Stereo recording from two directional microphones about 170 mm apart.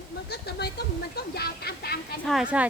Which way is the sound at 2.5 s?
5° right (ahead or behind).